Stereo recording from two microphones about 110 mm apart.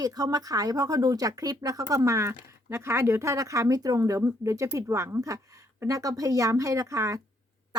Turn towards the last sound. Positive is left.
turn(degrees=-30)  # may be behind; listen again after turning